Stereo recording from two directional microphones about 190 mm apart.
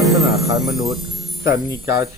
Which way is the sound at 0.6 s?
Centre (ahead or behind).